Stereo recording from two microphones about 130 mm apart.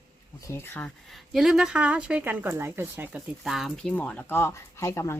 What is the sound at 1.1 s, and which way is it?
Speech, centre (ahead or behind).